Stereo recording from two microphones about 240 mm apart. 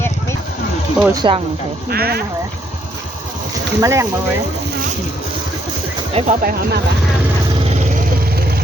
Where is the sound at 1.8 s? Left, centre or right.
Right.